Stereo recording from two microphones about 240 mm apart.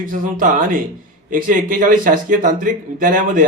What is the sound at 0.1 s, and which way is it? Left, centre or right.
A man's voice, right.